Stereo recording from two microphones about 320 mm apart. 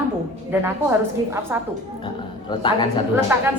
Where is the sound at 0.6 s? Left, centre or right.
Centre.